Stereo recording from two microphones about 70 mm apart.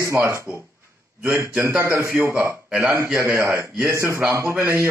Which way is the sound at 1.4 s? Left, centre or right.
Right.